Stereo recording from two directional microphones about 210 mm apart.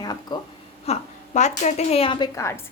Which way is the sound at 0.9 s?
35° left (ahead or behind).